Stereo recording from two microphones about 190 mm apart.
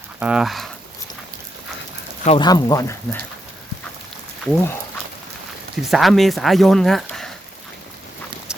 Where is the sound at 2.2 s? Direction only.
25° left (ahead or behind).